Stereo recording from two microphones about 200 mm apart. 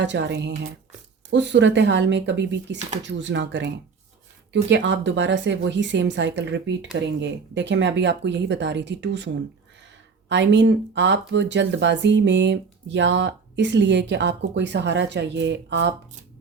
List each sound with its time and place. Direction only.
0.0 s speech: 60° right (ahead or behind)